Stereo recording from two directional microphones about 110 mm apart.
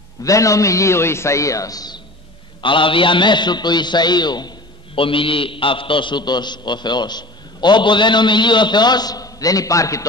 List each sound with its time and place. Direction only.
0.2 s a man's voice: 30° left (ahead or behind)
2.6 s a man's voice: 50° left (ahead or behind); by 10.0 s 30° left (ahead or behind)